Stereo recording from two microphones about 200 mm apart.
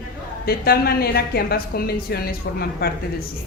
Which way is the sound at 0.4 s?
50° left (ahead or behind).